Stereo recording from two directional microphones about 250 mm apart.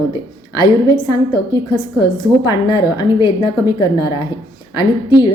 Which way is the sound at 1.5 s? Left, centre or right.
Centre.